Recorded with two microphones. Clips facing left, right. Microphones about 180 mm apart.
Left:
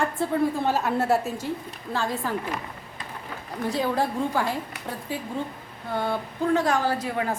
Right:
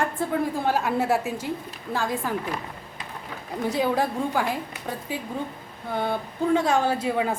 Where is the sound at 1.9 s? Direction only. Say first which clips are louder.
Right 1 dB; 15° right (ahead or behind).